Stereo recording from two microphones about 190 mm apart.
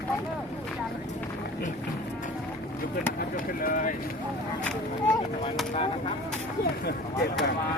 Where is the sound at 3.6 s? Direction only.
45° left (ahead or behind).